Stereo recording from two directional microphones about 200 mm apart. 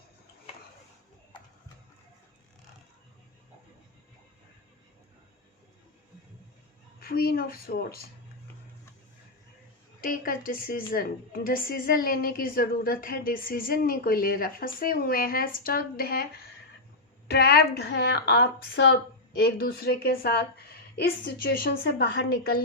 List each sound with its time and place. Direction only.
7.0 s a woman's voice: 50° left (ahead or behind)
10.0 s a woman's voice: 45° left (ahead or behind)
17.2 s a woman's voice: 55° left (ahead or behind)